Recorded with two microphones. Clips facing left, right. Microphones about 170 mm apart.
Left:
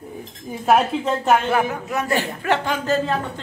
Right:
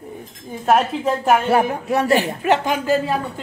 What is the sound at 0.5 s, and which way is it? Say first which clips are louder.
Speech: even; centre (ahead or behind).